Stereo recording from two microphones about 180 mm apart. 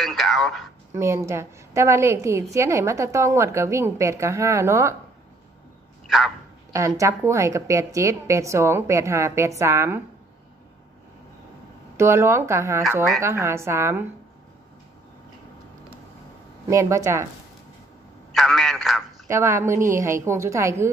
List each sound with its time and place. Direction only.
0.0 s a sound: centre (ahead or behind)
0.9 s a woman's voice: 15° right (ahead or behind)
6.0 s speech: centre (ahead or behind)
6.7 s a woman's voice: 15° right (ahead or behind)
12.0 s a woman's voice: 15° right (ahead or behind)
16.6 s a woman's voice: 15° right (ahead or behind)
18.3 s a man's voice: centre (ahead or behind)
19.2 s a woman's voice: 15° right (ahead or behind)